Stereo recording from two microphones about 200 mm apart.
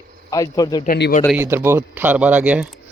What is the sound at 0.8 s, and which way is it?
Speech, 60° left (ahead or behind).